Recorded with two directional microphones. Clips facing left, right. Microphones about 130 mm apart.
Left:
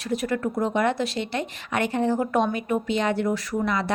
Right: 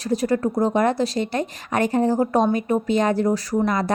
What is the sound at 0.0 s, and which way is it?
Speech, 35° right (ahead or behind).